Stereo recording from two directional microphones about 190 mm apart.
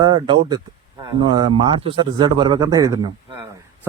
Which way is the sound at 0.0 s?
20° right (ahead or behind).